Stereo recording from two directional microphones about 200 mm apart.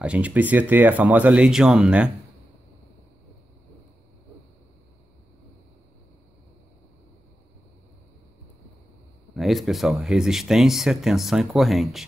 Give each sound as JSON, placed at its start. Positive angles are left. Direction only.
{"t": 0.0, "sound": "speech", "side_deg": -5}
{"t": 9.3, "sound": "speech", "side_deg": 0}